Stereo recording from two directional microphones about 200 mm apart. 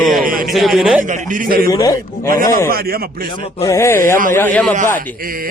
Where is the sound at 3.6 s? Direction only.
15° left (ahead or behind).